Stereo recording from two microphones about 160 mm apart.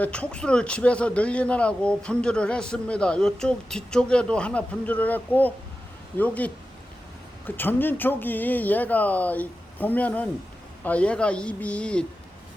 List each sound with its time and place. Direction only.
0.0 s speech: 10° left (ahead or behind)